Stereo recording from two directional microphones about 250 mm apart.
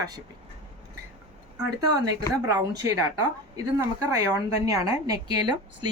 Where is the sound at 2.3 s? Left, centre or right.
Centre.